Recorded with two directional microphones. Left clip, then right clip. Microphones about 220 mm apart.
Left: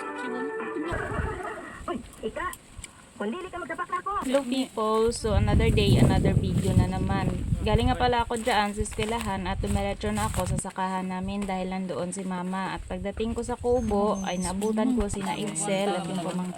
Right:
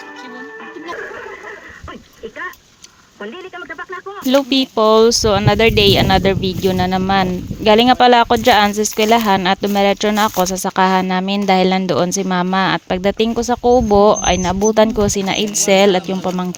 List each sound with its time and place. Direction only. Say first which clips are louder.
4.3 s speech: right 16 dB; 50° right (ahead or behind)